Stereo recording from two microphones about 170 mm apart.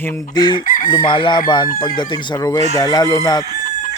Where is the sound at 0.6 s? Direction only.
55° left (ahead or behind).